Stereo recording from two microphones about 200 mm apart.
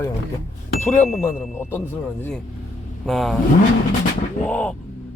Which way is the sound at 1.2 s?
10° left (ahead or behind).